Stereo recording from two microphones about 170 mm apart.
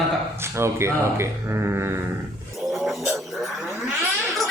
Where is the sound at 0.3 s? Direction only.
15° right (ahead or behind).